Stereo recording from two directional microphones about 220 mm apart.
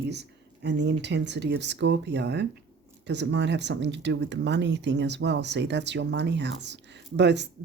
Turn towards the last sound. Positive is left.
turn(degrees=-50)  # may be behind; listen again after turning